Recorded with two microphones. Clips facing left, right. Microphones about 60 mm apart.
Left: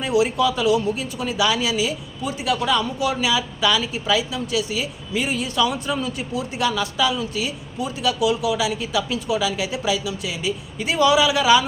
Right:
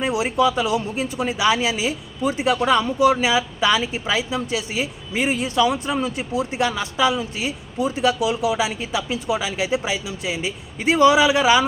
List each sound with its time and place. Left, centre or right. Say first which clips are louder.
0.0 s speech: even; right